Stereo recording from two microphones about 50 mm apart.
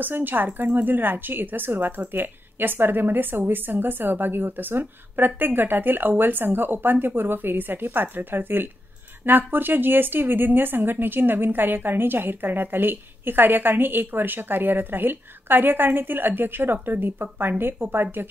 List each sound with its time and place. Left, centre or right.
0.0 s a woman's voice: right